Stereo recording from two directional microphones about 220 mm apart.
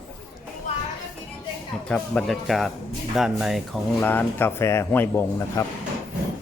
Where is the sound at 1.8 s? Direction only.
5° left (ahead or behind).